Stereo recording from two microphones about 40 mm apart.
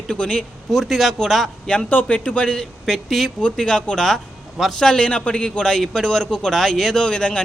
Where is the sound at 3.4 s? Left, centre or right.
Left.